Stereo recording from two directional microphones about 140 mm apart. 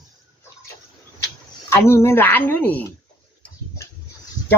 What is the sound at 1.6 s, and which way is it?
Speech, 20° left (ahead or behind).